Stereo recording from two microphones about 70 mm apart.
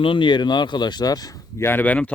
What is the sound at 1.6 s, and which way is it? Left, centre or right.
Speech, left.